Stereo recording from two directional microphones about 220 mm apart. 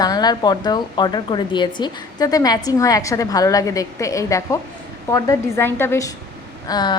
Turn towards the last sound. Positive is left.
turn(degrees=20)  # may be behind; listen again after turning